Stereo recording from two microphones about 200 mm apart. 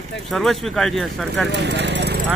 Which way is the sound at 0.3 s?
Centre (ahead or behind).